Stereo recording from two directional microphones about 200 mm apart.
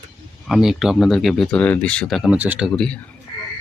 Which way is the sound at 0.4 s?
Centre (ahead or behind).